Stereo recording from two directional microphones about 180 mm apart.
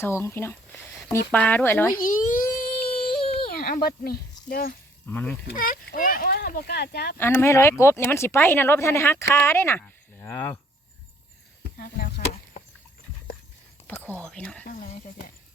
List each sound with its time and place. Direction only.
0.0 s speech: 15° left (ahead or behind)
2.0 s a child's voice: 50° left (ahead or behind)
2.6 s a sound: 55° left (ahead or behind)
3.3 s speech: 55° left (ahead or behind)
5.0 s speech: 10° left (ahead or behind)
5.5 s speech: 50° left (ahead or behind)
7.2 s speech: 10° left (ahead or behind)
11.8 s chop: 55° left (ahead or behind)
14.2 s speech: 5° left (ahead or behind)